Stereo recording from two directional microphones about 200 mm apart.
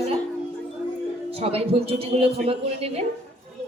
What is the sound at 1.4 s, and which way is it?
A woman's voice, 30° right (ahead or behind).